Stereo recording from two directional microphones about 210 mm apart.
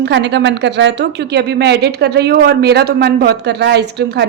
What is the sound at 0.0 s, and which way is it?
A woman's voice, 55° right (ahead or behind).